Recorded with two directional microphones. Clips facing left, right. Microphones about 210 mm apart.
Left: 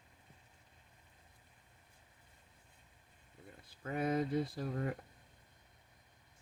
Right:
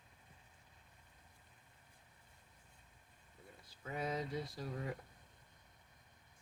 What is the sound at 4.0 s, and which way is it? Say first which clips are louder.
Speech: left 7 dB; 55° left (ahead or behind).